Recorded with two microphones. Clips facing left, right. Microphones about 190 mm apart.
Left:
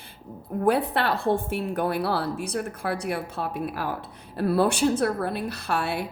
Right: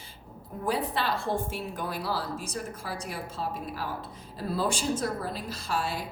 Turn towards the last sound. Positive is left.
turn(degrees=65)  # may be behind; listen again after turning